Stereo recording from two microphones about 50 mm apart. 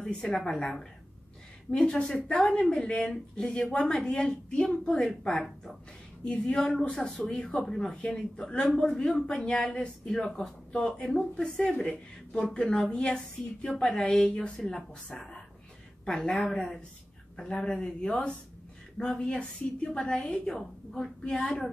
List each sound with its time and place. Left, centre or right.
0.0 s a woman's voice: centre
1.7 s speech: centre
6.2 s speech: centre
7.6 s speech: centre
10.7 s speech: centre
20.4 s speech: centre